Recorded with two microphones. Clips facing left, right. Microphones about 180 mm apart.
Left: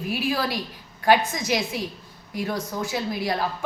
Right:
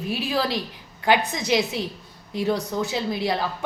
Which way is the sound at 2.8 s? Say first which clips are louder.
Right 2 dB; 20° right (ahead or behind).